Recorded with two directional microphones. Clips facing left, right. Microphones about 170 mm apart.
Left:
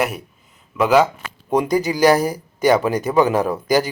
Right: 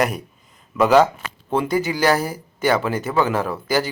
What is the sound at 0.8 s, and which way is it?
Speech, 10° left (ahead or behind).